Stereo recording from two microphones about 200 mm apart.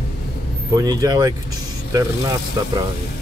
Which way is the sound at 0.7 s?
20° right (ahead or behind).